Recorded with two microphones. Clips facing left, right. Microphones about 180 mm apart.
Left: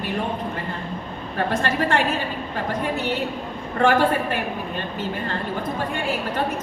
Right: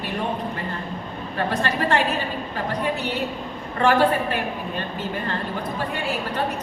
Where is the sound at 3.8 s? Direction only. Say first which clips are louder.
Even; 45° left (ahead or behind).